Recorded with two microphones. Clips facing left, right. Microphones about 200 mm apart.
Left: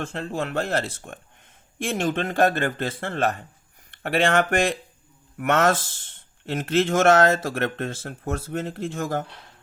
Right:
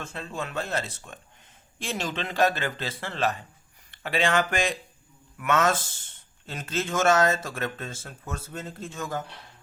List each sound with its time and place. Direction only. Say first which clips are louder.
0.2 s speech: left 5 dB; 65° left (ahead or behind)
6.4 s speech: left 9 dB; 70° left (ahead or behind)